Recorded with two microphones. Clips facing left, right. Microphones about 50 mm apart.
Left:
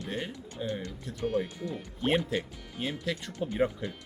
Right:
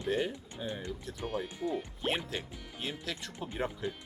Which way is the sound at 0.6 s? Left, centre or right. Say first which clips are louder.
Left 5 dB; right.